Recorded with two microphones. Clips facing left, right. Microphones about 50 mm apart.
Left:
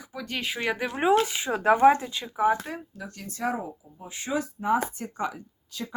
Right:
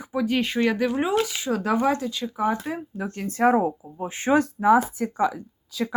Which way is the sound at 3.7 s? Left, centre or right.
Right.